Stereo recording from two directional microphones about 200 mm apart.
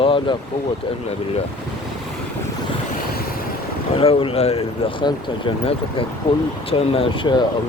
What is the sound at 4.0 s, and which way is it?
Speech, 30° left (ahead or behind).